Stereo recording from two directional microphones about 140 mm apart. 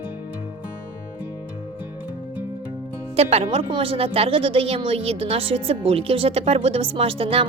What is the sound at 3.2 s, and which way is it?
A woman's voice, 45° right (ahead or behind).